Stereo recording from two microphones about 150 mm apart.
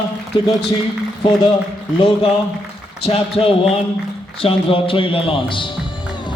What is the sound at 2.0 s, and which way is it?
A man's voice, 35° left (ahead or behind).